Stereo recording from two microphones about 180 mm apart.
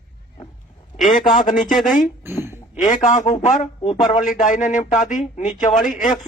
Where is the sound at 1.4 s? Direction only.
45° left (ahead or behind).